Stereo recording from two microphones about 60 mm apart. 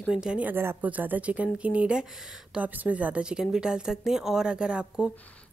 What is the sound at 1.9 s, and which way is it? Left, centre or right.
Speech, centre.